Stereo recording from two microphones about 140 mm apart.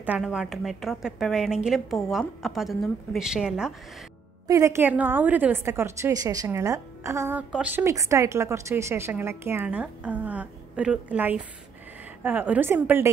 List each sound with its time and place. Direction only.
0.0 s a woman's voice: 10° right (ahead or behind)
4.5 s a woman's voice: 20° right (ahead or behind)